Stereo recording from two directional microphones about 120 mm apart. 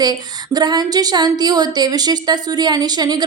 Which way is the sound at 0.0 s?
35° right (ahead or behind).